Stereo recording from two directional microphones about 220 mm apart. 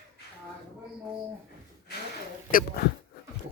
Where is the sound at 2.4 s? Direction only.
40° left (ahead or behind).